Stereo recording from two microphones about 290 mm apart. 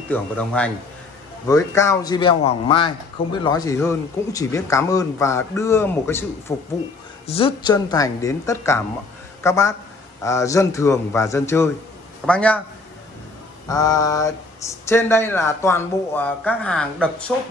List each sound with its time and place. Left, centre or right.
0.1 s speech: centre
13.7 s speech: centre